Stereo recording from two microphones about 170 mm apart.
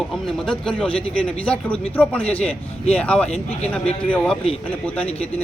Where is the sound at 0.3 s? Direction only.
5° left (ahead or behind).